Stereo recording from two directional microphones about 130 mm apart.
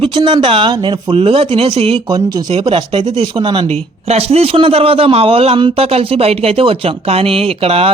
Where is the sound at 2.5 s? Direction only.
45° right (ahead or behind).